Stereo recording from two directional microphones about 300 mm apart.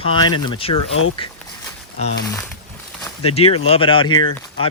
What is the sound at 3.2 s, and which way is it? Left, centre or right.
Speech, centre.